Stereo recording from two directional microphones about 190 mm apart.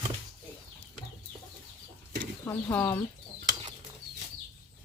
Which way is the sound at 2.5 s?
10° left (ahead or behind).